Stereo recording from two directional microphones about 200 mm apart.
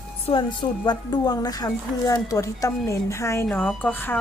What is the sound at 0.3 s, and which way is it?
A woman's voice, 30° left (ahead or behind).